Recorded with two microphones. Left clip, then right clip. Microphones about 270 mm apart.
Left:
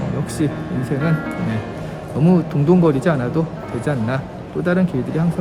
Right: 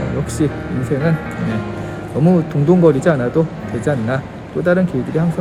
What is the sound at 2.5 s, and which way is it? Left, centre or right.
Speech, centre.